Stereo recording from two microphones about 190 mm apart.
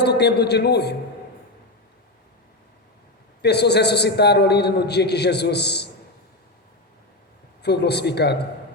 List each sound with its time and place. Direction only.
0.0 s a man's voice: 60° left (ahead or behind)
3.4 s a man's voice: 60° left (ahead or behind)
7.6 s a man's voice: 60° left (ahead or behind)